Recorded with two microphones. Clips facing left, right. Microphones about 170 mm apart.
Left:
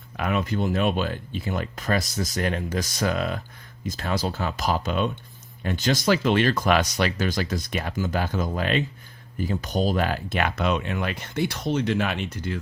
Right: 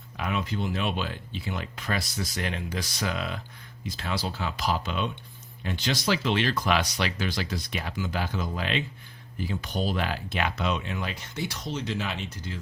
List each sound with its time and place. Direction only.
0.2 s speech: 50° left (ahead or behind)